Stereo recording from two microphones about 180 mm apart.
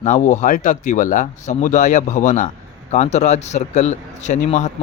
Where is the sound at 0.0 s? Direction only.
45° left (ahead or behind).